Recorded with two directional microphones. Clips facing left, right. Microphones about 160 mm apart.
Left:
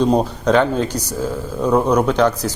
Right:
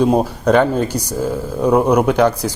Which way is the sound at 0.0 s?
10° right (ahead or behind).